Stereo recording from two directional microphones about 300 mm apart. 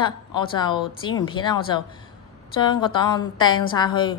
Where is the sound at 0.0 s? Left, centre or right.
Centre.